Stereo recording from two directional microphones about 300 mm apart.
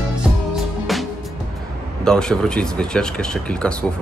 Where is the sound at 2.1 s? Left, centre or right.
Centre.